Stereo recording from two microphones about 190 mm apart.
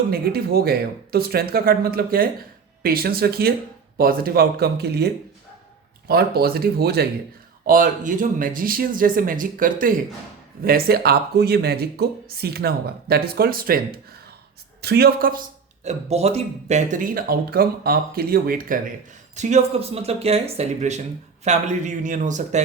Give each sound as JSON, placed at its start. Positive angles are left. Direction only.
{"t": 0.1, "sound": "speech", "side_deg": -55}
{"t": 7.7, "sound": "speech", "side_deg": -45}
{"t": 19.4, "sound": "speech", "side_deg": -35}